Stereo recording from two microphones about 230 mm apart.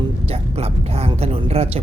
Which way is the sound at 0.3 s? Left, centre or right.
Right.